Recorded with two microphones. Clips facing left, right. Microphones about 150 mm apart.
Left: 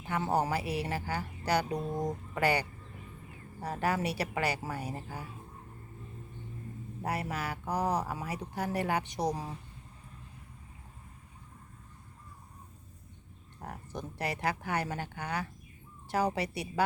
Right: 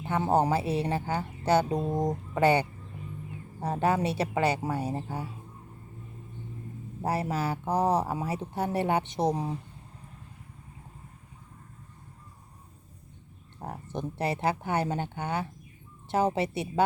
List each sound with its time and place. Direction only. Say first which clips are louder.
0.0 s speech: right 5 dB; 25° right (ahead or behind)
7.0 s speech: right 6 dB; 30° right (ahead or behind)
13.6 s speech: right 6 dB; 25° right (ahead or behind)